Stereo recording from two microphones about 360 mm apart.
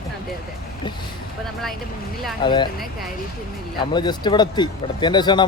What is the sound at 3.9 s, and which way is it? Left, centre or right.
Speech, centre.